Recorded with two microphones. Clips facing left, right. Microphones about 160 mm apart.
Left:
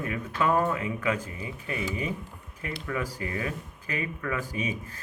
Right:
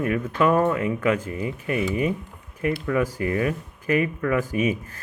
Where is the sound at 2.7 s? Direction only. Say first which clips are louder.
Right 6 dB; 40° right (ahead or behind).